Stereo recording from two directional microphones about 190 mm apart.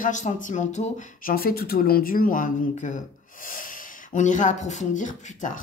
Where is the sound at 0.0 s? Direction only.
40° left (ahead or behind).